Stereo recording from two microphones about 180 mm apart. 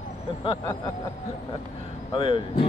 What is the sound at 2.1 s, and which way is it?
Speech, 25° left (ahead or behind).